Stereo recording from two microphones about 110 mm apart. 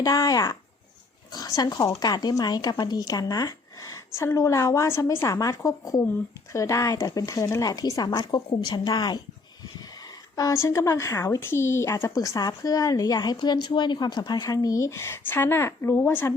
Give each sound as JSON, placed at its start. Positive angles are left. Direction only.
{"t": 0.0, "sound": "speech", "side_deg": 30}
{"t": 10.3, "sound": "a woman's voice", "side_deg": 30}